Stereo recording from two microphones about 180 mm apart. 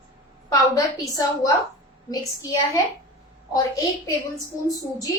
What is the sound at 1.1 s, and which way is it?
A woman's voice, 20° left (ahead or behind).